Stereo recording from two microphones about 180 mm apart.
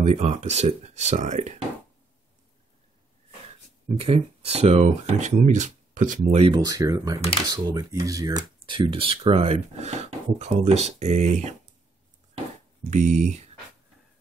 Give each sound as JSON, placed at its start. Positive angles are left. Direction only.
{"t": 0.0, "sound": "speech", "side_deg": -40}
{"t": 4.0, "sound": "speech", "side_deg": -35}
{"t": 6.5, "sound": "speech", "side_deg": -20}
{"t": 12.9, "sound": "speech", "side_deg": -40}